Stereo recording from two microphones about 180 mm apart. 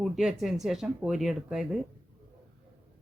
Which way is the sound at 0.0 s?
Centre (ahead or behind).